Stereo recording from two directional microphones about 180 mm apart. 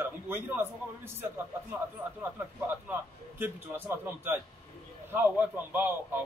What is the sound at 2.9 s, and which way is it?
A man's voice, 10° right (ahead or behind).